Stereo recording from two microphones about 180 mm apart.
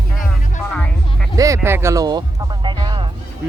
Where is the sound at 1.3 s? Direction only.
20° right (ahead or behind).